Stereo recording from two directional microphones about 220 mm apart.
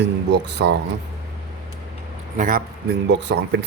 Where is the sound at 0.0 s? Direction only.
50° right (ahead or behind).